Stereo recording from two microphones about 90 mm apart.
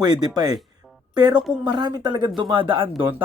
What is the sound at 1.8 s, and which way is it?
Speech, 50° right (ahead or behind).